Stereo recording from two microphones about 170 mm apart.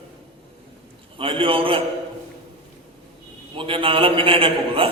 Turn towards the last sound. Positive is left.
turn(degrees=-35)  # may be behind; listen again after turning